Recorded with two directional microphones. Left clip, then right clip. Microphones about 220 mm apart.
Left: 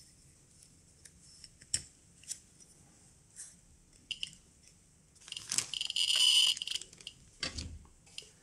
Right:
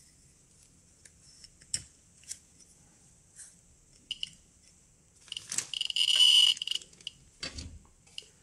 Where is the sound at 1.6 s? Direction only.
Centre (ahead or behind).